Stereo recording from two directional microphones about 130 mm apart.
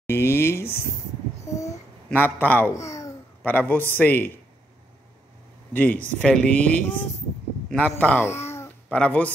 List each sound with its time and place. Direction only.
0.0 s speech: 20° left (ahead or behind)
1.4 s babbling: 25° left (ahead or behind)
2.0 s speech: 15° left (ahead or behind)
2.9 s babbling: 25° left (ahead or behind)
3.4 s speech: 15° left (ahead or behind)
5.7 s speech: 15° left (ahead or behind)